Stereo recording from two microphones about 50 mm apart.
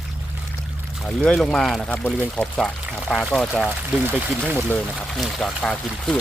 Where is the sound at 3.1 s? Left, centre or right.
Centre.